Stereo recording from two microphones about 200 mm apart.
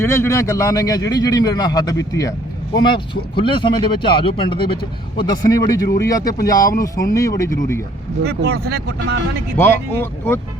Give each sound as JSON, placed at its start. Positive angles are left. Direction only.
{"t": 0.0, "sound": "a man's voice", "side_deg": 15}
{"t": 3.3, "sound": "a man's voice", "side_deg": 25}
{"t": 8.2, "sound": "speech", "side_deg": -55}
{"t": 9.6, "sound": "a man's voice", "side_deg": 10}